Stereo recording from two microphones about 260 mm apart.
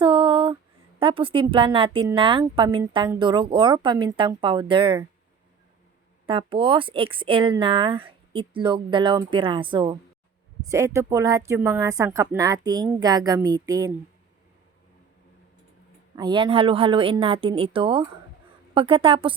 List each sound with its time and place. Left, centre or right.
0.0 s a sound: centre
0.9 s a woman's voice: centre
6.2 s a woman's voice: centre
16.1 s a woman's voice: centre